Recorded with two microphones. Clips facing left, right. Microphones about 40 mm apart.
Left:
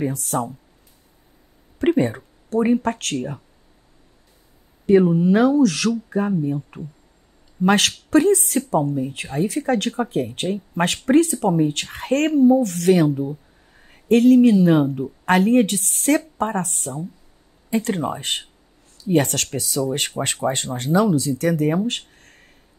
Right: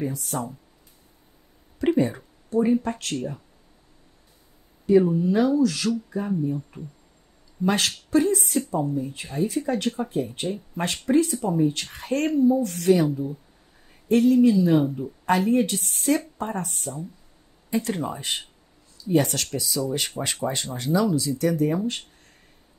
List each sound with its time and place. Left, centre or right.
0.0 s speech: left
1.8 s a sound: left
2.8 s speech: left
3.2 s speech: left
5.0 s speech: left
14.0 s speech: left
17.6 s speech: left